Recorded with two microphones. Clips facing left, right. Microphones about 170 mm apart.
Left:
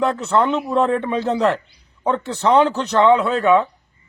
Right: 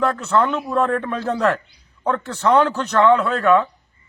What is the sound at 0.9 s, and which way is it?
A man's voice, 20° left (ahead or behind).